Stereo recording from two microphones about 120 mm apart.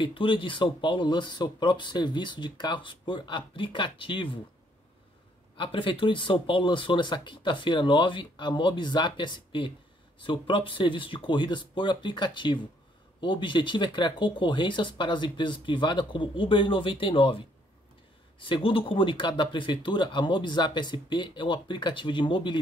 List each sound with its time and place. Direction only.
0.0 s speech: 45° left (ahead or behind)
5.6 s speech: 45° left (ahead or behind)